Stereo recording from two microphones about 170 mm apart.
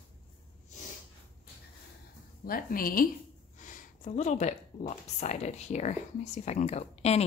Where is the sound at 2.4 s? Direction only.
60° left (ahead or behind).